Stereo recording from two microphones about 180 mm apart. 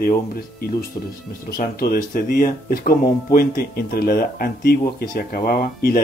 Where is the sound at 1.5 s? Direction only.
55° left (ahead or behind).